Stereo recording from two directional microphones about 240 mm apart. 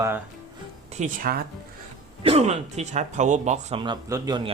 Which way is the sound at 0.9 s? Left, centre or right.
Right.